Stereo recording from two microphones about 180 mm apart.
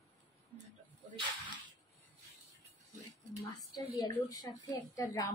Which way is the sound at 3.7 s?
20° left (ahead or behind).